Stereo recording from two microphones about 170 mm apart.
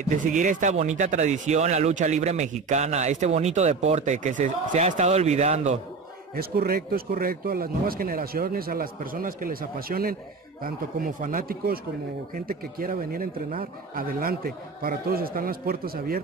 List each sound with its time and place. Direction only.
0.2 s speech: 50° right (ahead or behind)
6.3 s speech: 60° right (ahead or behind)